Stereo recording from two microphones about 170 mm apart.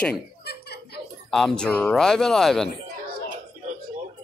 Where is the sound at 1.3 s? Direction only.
5° left (ahead or behind).